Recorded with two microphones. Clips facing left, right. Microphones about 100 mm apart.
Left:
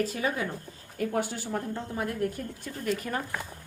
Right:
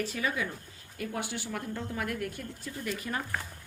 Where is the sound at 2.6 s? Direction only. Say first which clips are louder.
Left 5 dB; 45° left (ahead or behind).